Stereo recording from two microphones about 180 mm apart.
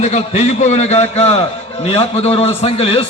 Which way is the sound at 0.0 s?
35° left (ahead or behind).